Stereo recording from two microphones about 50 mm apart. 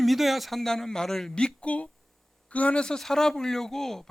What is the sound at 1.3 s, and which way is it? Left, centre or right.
Speech, centre.